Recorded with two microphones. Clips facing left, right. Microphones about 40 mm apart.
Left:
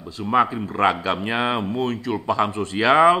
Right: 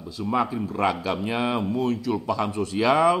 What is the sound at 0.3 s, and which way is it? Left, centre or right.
A man's voice, left.